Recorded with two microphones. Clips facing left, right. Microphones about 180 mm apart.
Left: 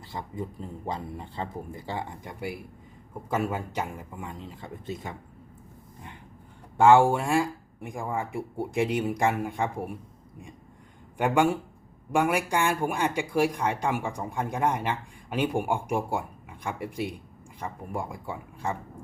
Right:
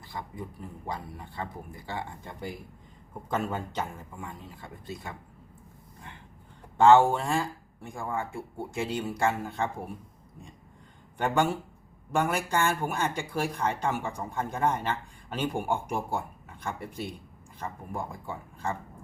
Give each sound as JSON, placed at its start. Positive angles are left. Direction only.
{"t": 0.1, "sound": "speech", "side_deg": 20}
{"t": 6.7, "sound": "speech", "side_deg": 10}
{"t": 11.2, "sound": "speech", "side_deg": 10}